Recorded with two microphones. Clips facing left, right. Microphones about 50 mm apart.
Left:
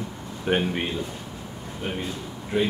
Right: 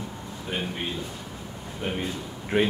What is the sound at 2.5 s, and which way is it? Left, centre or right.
Speech, right.